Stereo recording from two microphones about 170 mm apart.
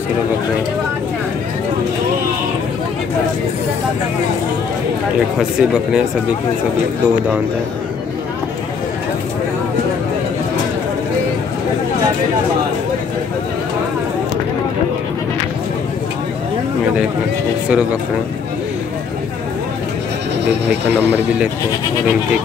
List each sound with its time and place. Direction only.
5.4 s speech: 5° right (ahead or behind)
20.9 s speech: 10° right (ahead or behind)